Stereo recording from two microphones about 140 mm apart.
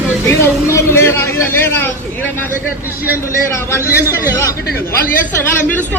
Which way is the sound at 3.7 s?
20° left (ahead or behind).